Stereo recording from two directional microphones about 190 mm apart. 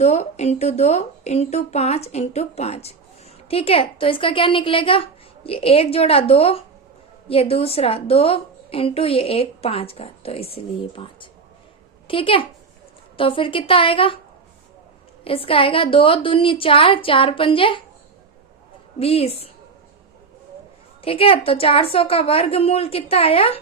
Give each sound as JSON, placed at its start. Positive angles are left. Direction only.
{"t": 0.0, "sound": "a woman's voice", "side_deg": 35}
{"t": 15.2, "sound": "a woman's voice", "side_deg": 30}
{"t": 18.9, "sound": "a woman's voice", "side_deg": 30}
{"t": 21.0, "sound": "a woman's voice", "side_deg": 30}